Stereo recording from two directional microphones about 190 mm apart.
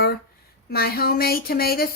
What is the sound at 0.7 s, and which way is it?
A woman's voice, 55° left (ahead or behind).